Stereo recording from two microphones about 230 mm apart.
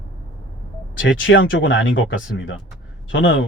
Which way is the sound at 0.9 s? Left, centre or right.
Left.